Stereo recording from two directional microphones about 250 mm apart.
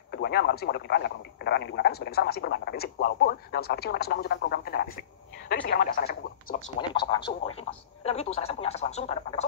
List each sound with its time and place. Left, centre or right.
0.1 s a man's voice: left
6.8 s a woman's voice: centre